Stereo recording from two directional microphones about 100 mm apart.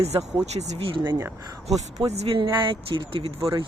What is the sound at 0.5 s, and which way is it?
Speech, 75° right (ahead or behind).